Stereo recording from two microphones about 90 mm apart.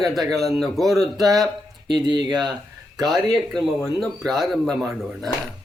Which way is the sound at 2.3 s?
50° right (ahead or behind).